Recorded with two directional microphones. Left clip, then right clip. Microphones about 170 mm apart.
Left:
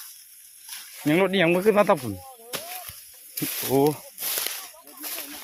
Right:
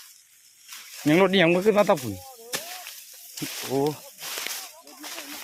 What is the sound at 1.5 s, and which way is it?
Speech, centre (ahead or behind).